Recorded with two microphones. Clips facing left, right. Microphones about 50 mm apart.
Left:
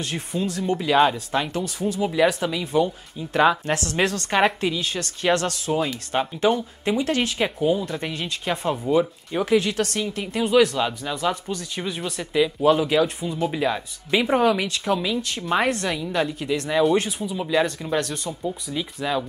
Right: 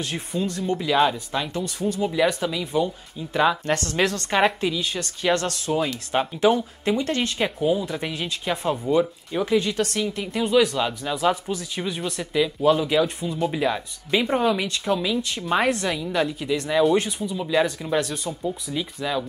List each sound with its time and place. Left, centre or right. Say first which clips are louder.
0.1 s speech: even; centre
4.0 s speech: left 1 dB; centre
17.5 s speech: even; centre